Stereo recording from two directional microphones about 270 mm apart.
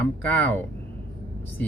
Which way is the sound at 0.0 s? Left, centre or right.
Centre.